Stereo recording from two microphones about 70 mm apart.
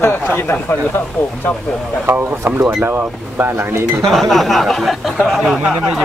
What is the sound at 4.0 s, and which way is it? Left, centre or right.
Speech, centre.